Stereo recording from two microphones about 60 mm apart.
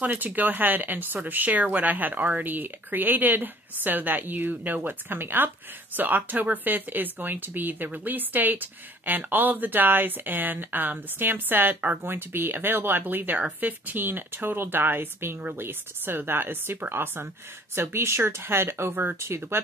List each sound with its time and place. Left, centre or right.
0.0 s speech: right
12.0 s speech: right